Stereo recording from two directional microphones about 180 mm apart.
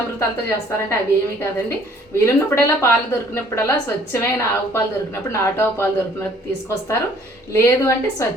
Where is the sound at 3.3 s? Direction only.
15° left (ahead or behind).